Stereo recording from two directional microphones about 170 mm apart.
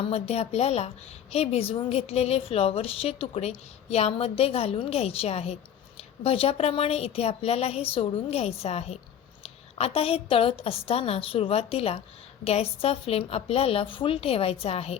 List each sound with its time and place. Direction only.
0.0 s a woman's voice: 35° left (ahead or behind)